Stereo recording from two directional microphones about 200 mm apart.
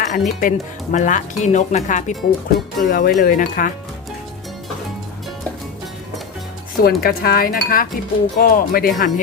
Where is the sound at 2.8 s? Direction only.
45° left (ahead or behind).